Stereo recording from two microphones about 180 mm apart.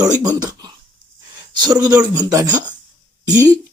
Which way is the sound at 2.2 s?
20° right (ahead or behind).